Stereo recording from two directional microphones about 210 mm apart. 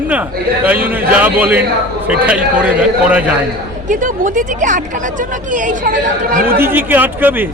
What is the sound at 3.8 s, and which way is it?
Speech, 40° right (ahead or behind).